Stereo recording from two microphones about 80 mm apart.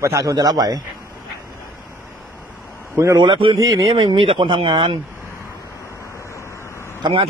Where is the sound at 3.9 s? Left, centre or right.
Right.